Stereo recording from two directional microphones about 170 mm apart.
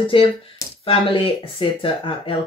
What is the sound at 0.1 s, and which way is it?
Speech, 30° left (ahead or behind).